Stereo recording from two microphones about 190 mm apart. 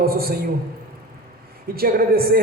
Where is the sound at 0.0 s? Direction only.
55° right (ahead or behind).